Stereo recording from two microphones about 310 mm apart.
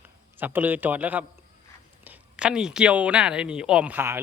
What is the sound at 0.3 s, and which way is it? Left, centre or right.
A man's voice, centre.